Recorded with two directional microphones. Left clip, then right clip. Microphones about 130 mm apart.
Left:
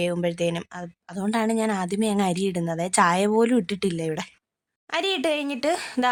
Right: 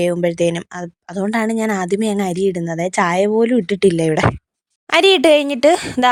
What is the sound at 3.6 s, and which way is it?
Speech, 45° right (ahead or behind).